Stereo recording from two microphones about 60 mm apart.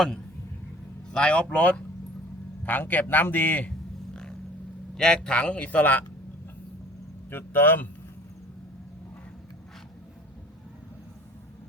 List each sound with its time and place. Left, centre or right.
1.1 s a man's voice: centre
2.6 s a man's voice: left
4.1 s vehicle: centre
4.9 s a man's voice: centre; by 6.1 s left
7.3 s speech: left